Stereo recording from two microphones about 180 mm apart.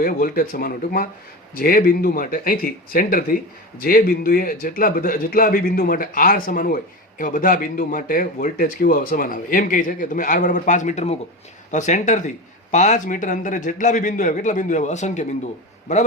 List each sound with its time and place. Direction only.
0.0 s a man's voice: 50° left (ahead or behind)